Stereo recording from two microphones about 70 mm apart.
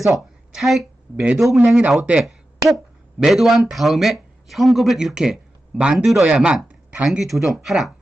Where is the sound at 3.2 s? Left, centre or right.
Centre.